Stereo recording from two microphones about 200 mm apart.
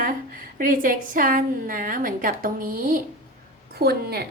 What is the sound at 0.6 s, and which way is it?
A woman's voice, 45° right (ahead or behind).